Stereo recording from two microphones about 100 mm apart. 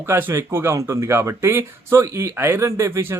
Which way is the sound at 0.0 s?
25° right (ahead or behind).